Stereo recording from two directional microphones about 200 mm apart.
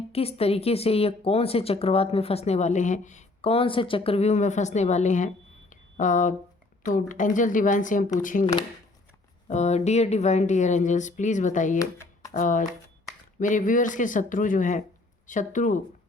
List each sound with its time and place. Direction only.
0.1 s speech: 30° left (ahead or behind)
9.5 s speech: 35° left (ahead or behind)